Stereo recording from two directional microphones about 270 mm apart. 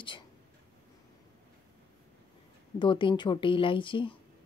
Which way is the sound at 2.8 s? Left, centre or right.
Centre.